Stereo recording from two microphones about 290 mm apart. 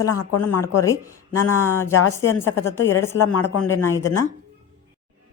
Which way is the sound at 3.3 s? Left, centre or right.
Left.